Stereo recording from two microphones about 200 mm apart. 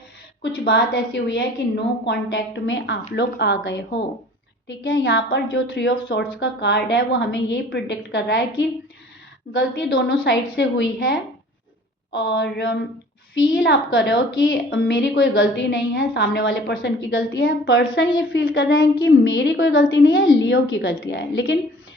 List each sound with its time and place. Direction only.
0.4 s a woman's voice: 55° left (ahead or behind)
18.3 s a woman's voice: 75° left (ahead or behind)